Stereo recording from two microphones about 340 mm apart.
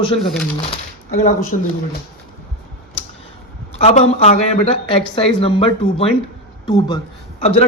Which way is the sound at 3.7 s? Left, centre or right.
Centre.